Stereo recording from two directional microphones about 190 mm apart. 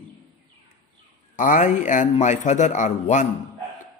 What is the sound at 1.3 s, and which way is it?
Speech, 40° left (ahead or behind).